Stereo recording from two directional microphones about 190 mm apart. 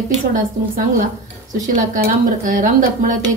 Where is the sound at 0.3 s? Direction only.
45° right (ahead or behind).